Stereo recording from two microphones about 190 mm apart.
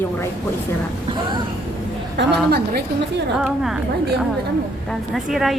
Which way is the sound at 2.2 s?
65° right (ahead or behind).